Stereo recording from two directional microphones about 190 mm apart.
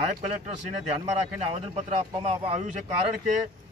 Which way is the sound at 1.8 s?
35° right (ahead or behind).